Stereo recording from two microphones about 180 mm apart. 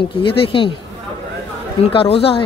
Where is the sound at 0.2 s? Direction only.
30° left (ahead or behind).